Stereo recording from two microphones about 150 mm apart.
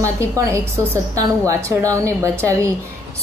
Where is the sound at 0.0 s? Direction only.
20° right (ahead or behind).